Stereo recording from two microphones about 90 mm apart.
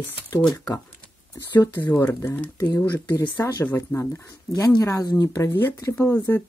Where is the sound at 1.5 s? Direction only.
20° left (ahead or behind).